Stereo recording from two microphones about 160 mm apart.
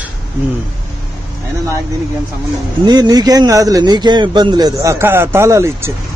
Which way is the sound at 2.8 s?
25° right (ahead or behind).